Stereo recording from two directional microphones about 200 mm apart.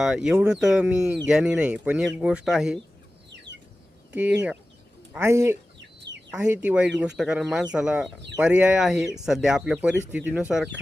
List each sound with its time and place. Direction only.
0.0 s speech: 5° right (ahead or behind)
4.1 s speech: 5° right (ahead or behind)
6.1 s chicken: 60° right (ahead or behind)
6.4 s speech: 10° right (ahead or behind)